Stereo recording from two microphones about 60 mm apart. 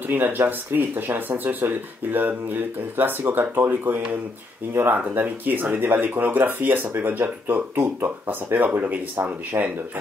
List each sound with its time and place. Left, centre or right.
0.1 s speech: right